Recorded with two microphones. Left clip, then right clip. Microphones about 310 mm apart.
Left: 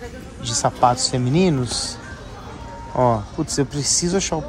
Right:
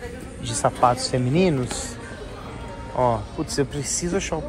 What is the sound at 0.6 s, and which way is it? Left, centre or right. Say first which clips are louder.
Speech: left 2 dB; centre.